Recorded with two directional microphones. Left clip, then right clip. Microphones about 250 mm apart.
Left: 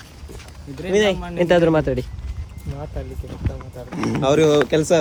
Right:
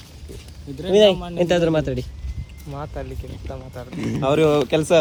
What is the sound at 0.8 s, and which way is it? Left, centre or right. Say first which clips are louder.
Speech: right 4 dB; centre.